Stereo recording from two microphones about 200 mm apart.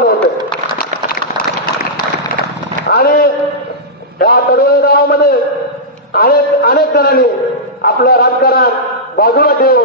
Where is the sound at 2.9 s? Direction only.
50° left (ahead or behind).